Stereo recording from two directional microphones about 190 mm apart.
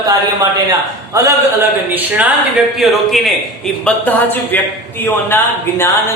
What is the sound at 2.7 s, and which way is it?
A man's voice, centre (ahead or behind).